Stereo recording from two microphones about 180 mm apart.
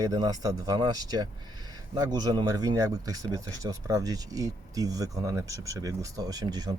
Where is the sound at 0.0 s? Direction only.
20° right (ahead or behind).